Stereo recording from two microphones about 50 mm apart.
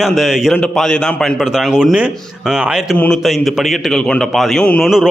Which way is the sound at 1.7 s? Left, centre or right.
Centre.